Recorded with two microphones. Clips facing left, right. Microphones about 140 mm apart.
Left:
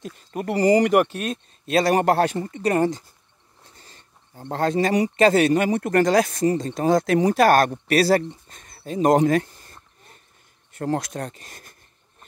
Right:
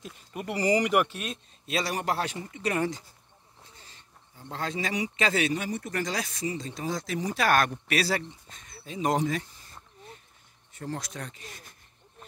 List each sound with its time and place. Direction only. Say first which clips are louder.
0.0 s speech: left 8 dB; 40° left (ahead or behind)
3.7 s wild animals: left 5 dB; 45° left (ahead or behind)
4.4 s speech: left 11 dB; 50° left (ahead or behind)
5.6 s speech: left 12 dB; 70° left (ahead or behind)
7.3 s speech: left 4 dB; 40° left (ahead or behind)